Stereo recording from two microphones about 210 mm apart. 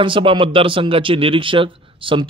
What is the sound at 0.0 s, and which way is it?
A man's voice, 25° right (ahead or behind).